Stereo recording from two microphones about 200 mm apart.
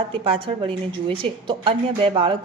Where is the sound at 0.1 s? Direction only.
25° right (ahead or behind).